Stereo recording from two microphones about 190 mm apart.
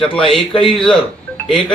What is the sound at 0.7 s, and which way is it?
A man's voice, 5° left (ahead or behind).